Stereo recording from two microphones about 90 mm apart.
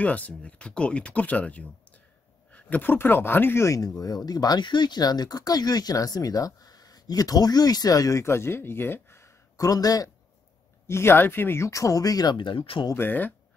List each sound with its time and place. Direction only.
0.0 s speech: 15° left (ahead or behind); by 10.1 s 40° left (ahead or behind)
10.9 s speech: 25° left (ahead or behind); by 12.4 s 45° left (ahead or behind)
12.4 s speech: 70° left (ahead or behind)
12.9 s speech: 20° left (ahead or behind)